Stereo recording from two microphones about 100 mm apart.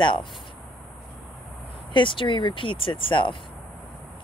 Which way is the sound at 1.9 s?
55° left (ahead or behind).